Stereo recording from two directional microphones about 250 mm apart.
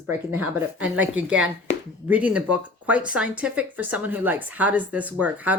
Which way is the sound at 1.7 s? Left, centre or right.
Left.